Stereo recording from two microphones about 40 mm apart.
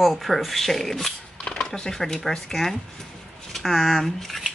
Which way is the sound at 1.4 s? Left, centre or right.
Centre.